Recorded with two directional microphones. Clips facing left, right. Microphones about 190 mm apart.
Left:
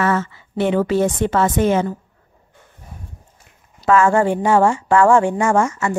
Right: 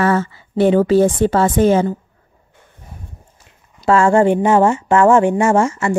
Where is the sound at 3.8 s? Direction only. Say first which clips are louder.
Right 2 dB; 30° right (ahead or behind).